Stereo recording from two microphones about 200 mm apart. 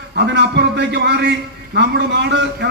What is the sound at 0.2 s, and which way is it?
A man's voice, 55° right (ahead or behind).